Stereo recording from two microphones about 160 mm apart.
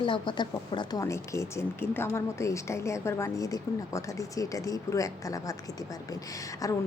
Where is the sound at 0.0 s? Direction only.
30° left (ahead or behind).